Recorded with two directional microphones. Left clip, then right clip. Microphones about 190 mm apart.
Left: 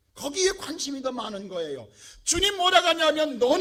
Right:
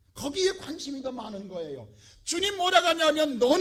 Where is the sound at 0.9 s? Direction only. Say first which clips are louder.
Left 4 dB; 35° left (ahead or behind); by 3.3 s 10° left (ahead or behind).